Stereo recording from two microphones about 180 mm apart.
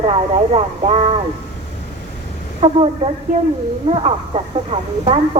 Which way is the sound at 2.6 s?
35° right (ahead or behind).